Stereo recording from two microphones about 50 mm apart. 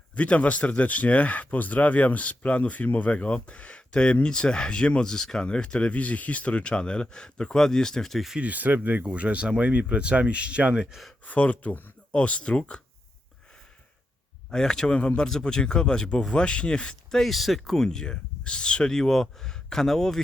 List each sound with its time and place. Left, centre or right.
0.2 s speech: left; by 8.2 s centre
8.4 s speech: right
11.3 s speech: left
14.5 s speech: centre
17.2 s speech: centre
17.8 s speech: centre